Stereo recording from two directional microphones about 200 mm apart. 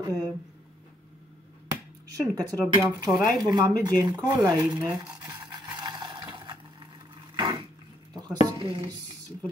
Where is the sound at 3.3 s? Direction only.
20° right (ahead or behind).